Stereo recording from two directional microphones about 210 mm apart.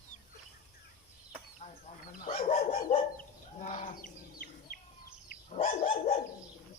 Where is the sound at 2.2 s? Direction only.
35° left (ahead or behind).